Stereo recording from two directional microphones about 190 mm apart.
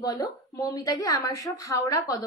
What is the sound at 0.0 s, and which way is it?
A woman's voice, 20° left (ahead or behind).